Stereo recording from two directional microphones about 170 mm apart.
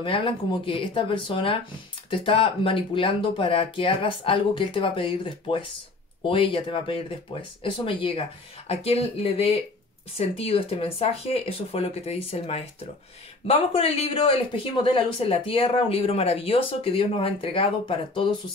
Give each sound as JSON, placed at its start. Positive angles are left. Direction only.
{"t": 0.0, "sound": "speech", "side_deg": 30}